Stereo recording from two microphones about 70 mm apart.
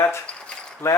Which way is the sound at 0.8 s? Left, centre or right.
Left.